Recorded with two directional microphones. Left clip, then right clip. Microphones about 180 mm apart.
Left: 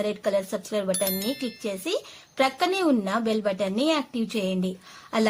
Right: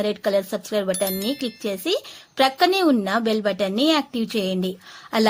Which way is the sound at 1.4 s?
30° right (ahead or behind).